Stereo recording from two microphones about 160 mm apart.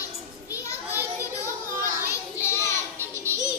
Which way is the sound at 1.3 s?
20° left (ahead or behind).